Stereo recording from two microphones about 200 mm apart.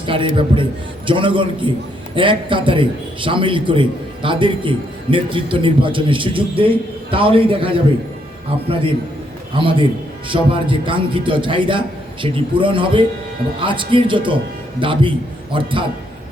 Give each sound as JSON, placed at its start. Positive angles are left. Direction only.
{"t": 0.0, "sound": "a man's voice", "side_deg": -25}
{"t": 9.6, "sound": "a man's voice", "side_deg": -25}